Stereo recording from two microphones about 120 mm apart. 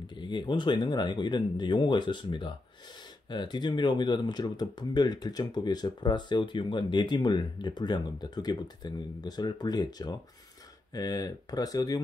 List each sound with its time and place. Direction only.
0.0 s speech: 40° left (ahead or behind)